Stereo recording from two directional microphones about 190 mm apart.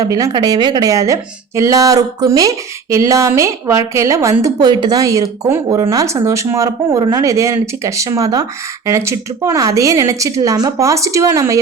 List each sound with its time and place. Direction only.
0.0 s speech: 20° right (ahead or behind)